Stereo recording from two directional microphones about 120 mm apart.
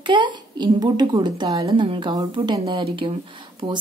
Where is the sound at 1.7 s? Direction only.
45° right (ahead or behind).